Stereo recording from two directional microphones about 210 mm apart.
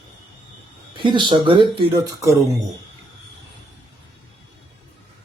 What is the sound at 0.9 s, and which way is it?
Speech, 25° right (ahead or behind).